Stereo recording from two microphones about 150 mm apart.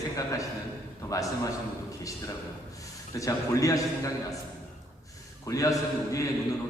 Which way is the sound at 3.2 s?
20° left (ahead or behind).